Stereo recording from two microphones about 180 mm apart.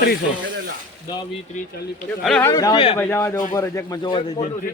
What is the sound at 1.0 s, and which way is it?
Speech, 20° left (ahead or behind).